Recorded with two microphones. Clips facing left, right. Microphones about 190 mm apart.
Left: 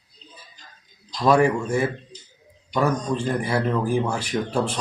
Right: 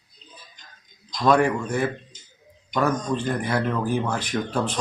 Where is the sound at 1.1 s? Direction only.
5° left (ahead or behind).